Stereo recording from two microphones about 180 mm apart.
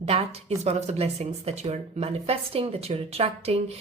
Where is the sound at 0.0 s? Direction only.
35° right (ahead or behind).